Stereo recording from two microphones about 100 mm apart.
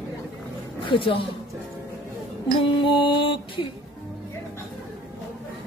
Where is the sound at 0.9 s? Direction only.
60° left (ahead or behind).